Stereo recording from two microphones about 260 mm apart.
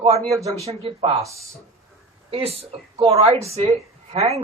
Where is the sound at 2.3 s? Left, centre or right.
Right.